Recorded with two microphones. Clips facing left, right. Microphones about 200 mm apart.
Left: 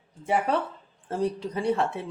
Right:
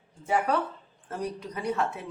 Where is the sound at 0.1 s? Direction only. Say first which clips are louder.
Left 1 dB; 20° left (ahead or behind).